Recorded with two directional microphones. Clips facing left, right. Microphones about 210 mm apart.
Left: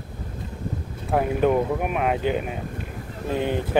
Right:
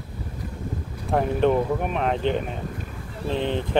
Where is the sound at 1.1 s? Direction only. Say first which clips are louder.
Even; 5° left (ahead or behind).